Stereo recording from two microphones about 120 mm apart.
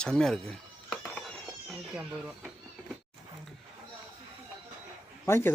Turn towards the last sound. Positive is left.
turn(degrees=20)  # may be behind; listen again after turning